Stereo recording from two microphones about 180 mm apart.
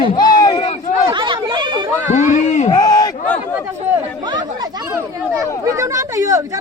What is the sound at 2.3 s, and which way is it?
Speech, 40° left (ahead or behind).